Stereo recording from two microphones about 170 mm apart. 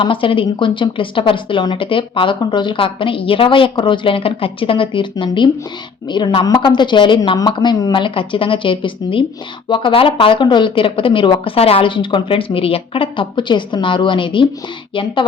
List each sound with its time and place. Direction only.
0.0 s a woman's voice: 30° left (ahead or behind)